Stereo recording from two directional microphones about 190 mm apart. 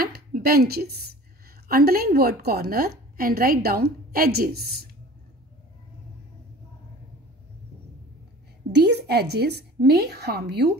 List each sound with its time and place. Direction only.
0.0 s a woman's voice: 50° right (ahead or behind)
8.7 s a woman's voice: 60° right (ahead or behind)